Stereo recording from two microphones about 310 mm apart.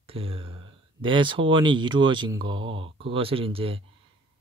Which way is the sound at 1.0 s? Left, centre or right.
Centre.